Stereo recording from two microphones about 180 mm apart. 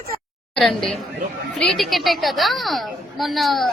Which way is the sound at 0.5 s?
Centre (ahead or behind).